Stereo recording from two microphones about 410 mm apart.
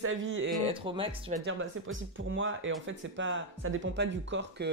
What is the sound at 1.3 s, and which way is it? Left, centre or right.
Speech, right.